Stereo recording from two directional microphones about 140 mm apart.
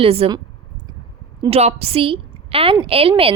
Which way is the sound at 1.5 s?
45° right (ahead or behind).